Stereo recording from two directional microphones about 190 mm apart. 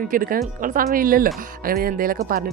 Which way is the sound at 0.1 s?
45° right (ahead or behind).